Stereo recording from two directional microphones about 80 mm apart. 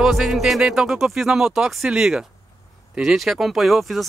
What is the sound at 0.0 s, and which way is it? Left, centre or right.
Speech, centre.